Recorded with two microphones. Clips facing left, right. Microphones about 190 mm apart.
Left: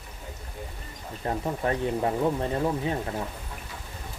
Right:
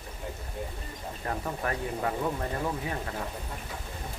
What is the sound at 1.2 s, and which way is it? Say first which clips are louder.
Speech: left 5 dB; 25° left (ahead or behind).